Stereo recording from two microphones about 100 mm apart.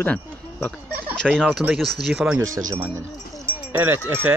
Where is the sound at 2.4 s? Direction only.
30° right (ahead or behind).